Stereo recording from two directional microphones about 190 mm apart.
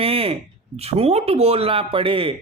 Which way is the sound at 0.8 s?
30° right (ahead or behind).